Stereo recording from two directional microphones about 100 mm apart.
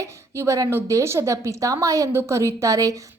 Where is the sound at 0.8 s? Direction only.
30° right (ahead or behind).